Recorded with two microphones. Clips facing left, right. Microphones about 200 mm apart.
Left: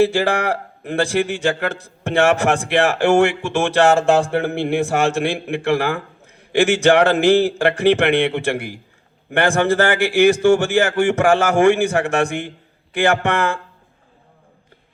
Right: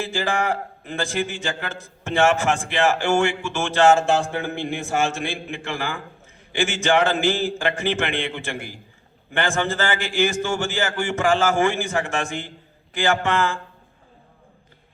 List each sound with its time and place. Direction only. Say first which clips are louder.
0.0 s speech: left 8 dB; 65° left (ahead or behind)